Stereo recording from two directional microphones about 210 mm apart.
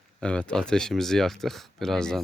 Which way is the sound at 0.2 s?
5° left (ahead or behind).